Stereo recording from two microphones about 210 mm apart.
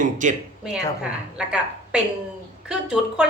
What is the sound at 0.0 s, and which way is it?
Speech, 35° right (ahead or behind).